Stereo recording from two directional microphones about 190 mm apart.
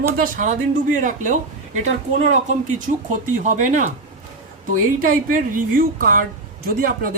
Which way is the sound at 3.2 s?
40° right (ahead or behind).